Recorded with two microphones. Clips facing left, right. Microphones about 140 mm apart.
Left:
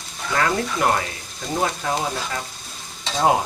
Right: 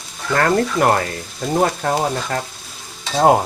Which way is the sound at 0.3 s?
50° right (ahead or behind).